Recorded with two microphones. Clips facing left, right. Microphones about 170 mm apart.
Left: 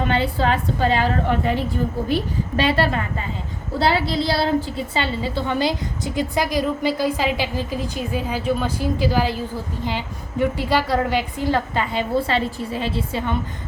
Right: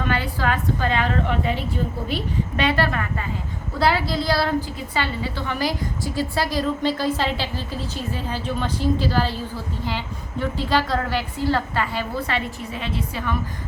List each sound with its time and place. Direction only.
0.0 s a woman's voice: 25° left (ahead or behind)
2.6 s a woman's voice: 30° left (ahead or behind)